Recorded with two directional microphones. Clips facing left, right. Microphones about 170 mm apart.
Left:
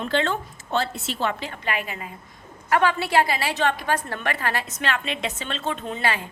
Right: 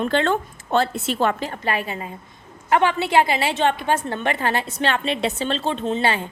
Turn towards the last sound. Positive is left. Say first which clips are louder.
# right 5 dB
turn(degrees=-30)  # may be behind; listen again after turning